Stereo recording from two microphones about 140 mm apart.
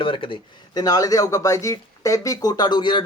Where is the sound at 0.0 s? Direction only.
40° left (ahead or behind).